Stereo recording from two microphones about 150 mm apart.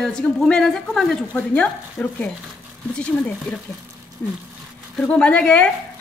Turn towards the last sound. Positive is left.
turn(degrees=5)  # may be behind; listen again after turning